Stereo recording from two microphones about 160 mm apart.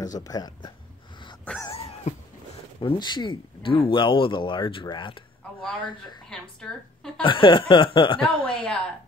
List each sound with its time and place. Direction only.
0.0 s speech: 25° left (ahead or behind)
1.4 s a sound: 10° left (ahead or behind)
1.7 s a sound: 35° left (ahead or behind)
2.8 s speech: 30° left (ahead or behind)
5.6 s speech: 10° left (ahead or behind)
7.2 s speech: 30° left (ahead or behind)
8.5 s speech: 5° left (ahead or behind)